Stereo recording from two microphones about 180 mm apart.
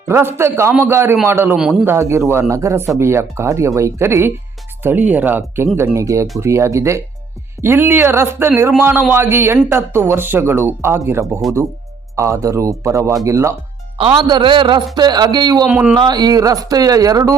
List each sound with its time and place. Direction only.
0.1 s a man's voice: 15° right (ahead or behind)
15.6 s a man's voice: 5° right (ahead or behind)
16.0 s speech: 25° right (ahead or behind)